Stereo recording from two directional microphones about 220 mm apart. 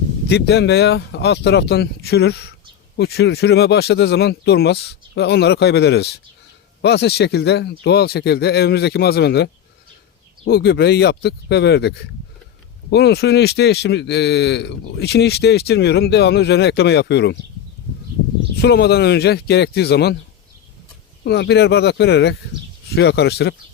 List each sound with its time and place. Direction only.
0.3 s speech: 50° left (ahead or behind)
18.6 s speech: 50° left (ahead or behind)
21.2 s speech: 50° left (ahead or behind)